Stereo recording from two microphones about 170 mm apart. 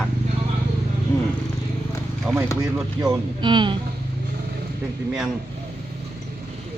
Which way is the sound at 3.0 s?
25° right (ahead or behind).